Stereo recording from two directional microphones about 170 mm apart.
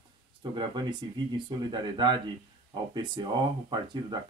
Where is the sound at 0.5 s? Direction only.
25° right (ahead or behind).